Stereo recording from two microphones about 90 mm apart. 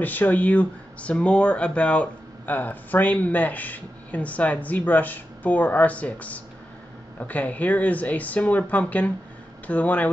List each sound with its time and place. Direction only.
0.0 s speech: 20° left (ahead or behind)